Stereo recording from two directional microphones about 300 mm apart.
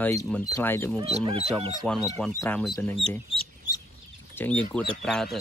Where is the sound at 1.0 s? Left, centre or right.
Centre.